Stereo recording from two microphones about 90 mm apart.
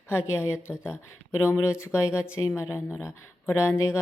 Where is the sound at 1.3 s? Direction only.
30° left (ahead or behind).